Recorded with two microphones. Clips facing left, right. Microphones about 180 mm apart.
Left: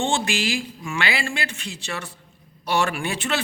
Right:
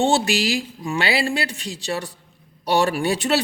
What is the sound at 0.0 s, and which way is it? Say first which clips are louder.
A man's voice: right 5 dB; 35° right (ahead or behind).